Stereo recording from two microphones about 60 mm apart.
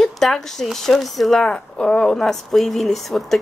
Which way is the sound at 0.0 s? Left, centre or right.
Centre.